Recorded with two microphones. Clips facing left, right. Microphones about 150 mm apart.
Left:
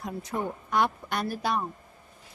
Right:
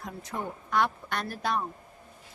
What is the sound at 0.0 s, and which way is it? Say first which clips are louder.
A woman's voice: left 4 dB; 15° left (ahead or behind).